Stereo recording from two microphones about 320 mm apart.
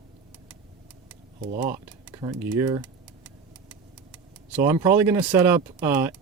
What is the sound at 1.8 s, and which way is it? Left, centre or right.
Speech, centre.